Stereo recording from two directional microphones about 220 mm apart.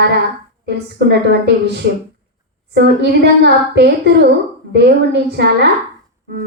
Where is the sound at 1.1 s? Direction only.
50° right (ahead or behind).